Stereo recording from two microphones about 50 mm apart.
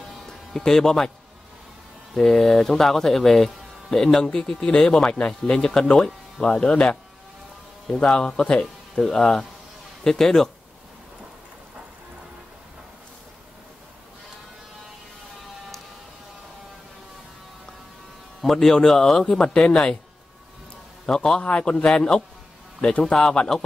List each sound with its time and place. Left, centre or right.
0.3 s speech: centre
2.1 s speech: centre
6.7 s a man's voice: left
8.0 s speech: centre
18.4 s speech: centre
21.0 s a man's voice: centre